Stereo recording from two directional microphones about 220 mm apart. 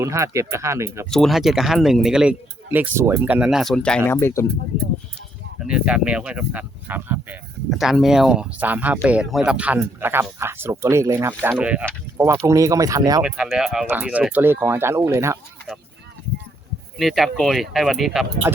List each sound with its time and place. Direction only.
0.0 s speech: 15° right (ahead or behind)
1.1 s speech: centre (ahead or behind)
5.6 s speech: 5° right (ahead or behind)
13.2 s speech: 5° right (ahead or behind)
17.0 s speech: centre (ahead or behind)